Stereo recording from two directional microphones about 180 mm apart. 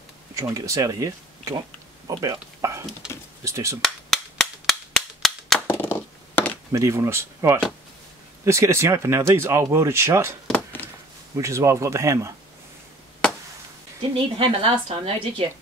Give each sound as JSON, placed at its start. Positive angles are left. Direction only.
{"t": 0.3, "sound": "speech", "side_deg": -20}
{"t": 3.8, "sound": "cap gun", "side_deg": 0}
{"t": 6.7, "sound": "speech", "side_deg": -15}
{"t": 10.4, "sound": "a sound", "side_deg": 10}
{"t": 11.3, "sound": "speech", "side_deg": -15}
{"t": 14.1, "sound": "a woman's voice", "side_deg": -30}